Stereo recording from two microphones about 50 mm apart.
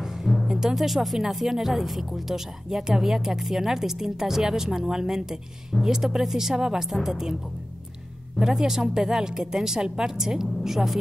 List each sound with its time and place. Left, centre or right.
0.0 s music: centre
0.5 s speech: centre
8.4 s speech: centre